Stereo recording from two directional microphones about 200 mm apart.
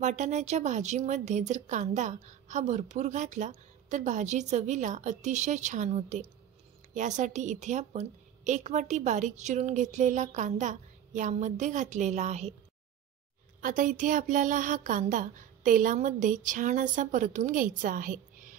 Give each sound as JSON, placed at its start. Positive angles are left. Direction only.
{"t": 0.0, "sound": "speech", "side_deg": -35}
{"t": 13.6, "sound": "speech", "side_deg": -40}